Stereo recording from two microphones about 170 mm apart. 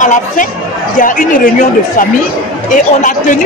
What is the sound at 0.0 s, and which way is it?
Speech, 50° left (ahead or behind).